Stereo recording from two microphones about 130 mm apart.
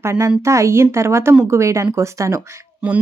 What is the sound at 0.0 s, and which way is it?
Speech, 25° right (ahead or behind).